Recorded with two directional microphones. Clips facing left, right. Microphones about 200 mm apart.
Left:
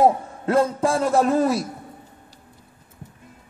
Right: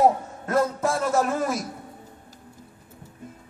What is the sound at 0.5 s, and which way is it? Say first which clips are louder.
A man's voice: left 4 dB; 30° left (ahead or behind).